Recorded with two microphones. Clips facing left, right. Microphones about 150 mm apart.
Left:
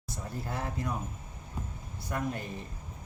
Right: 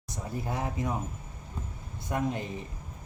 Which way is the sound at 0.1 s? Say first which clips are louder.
Right 3 dB; 15° right (ahead or behind).